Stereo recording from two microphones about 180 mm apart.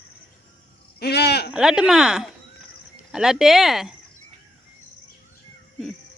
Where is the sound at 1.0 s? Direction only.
65° left (ahead or behind).